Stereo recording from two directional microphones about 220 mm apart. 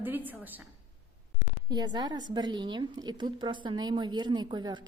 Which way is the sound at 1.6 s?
20° right (ahead or behind).